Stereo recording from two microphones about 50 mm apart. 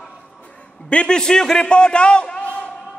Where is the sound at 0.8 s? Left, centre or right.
Centre.